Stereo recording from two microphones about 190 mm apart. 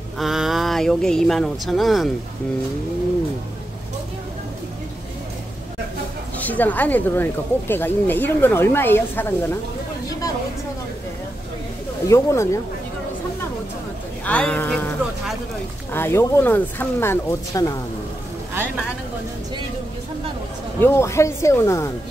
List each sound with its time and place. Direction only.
0.2 s speech: centre (ahead or behind)
6.3 s speech: 10° left (ahead or behind)
12.1 s speech: 15° left (ahead or behind)
14.2 s speech: 5° left (ahead or behind)
15.9 s speech: 10° left (ahead or behind)
20.8 s speech: 15° left (ahead or behind)